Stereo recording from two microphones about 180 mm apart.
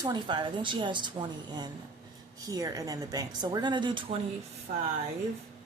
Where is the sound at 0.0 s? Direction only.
25° right (ahead or behind).